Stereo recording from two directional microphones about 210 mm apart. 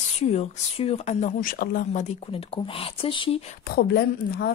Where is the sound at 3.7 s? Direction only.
50° left (ahead or behind).